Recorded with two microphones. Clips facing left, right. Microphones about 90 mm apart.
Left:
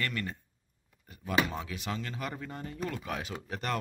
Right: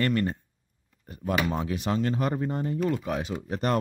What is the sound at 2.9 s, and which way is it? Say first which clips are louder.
Speech: right 8 dB; 25° right (ahead or behind).